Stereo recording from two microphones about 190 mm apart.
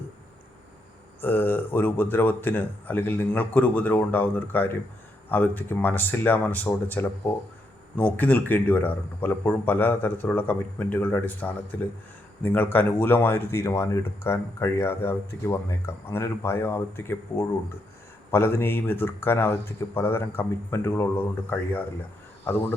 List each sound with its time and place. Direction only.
1.2 s speech: 10° left (ahead or behind)